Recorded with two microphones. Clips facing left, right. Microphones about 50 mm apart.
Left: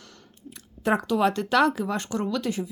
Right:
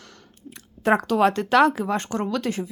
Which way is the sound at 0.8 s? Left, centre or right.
Right.